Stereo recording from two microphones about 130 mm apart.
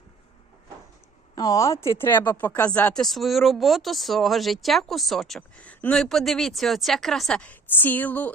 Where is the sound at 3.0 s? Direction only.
Centre (ahead or behind).